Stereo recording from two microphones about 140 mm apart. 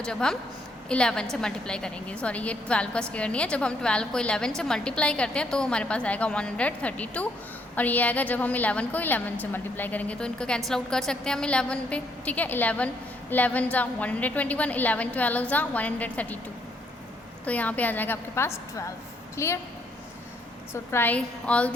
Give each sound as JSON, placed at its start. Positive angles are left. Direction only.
{"t": 0.0, "sound": "a woman's voice", "side_deg": 5}
{"t": 17.4, "sound": "a woman's voice", "side_deg": 10}
{"t": 20.7, "sound": "a woman's voice", "side_deg": 15}